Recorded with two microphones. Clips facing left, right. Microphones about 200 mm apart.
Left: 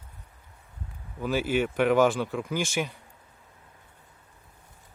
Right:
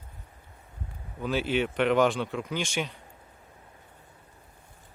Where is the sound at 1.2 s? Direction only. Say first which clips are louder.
Left 1 dB; 5° left (ahead or behind).